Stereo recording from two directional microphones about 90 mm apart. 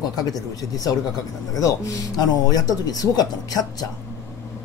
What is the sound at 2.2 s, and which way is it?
Speech, 40° left (ahead or behind).